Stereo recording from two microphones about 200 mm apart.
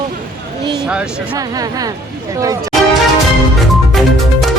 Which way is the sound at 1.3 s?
20° right (ahead or behind).